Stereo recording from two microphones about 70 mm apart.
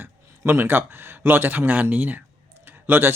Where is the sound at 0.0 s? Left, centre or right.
Right.